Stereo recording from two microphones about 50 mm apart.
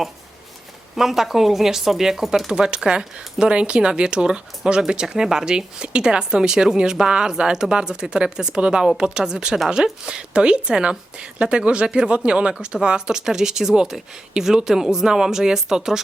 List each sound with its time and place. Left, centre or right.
0.9 s speech: centre
2.5 s a woman's voice: centre